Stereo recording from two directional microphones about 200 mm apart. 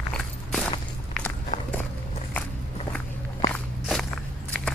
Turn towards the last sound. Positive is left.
turn(degrees=5)  # may be behind; listen again after turning